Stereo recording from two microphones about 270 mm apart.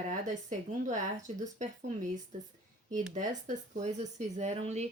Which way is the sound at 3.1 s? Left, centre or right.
Right.